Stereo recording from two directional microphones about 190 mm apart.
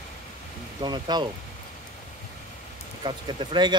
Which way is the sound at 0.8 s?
20° right (ahead or behind).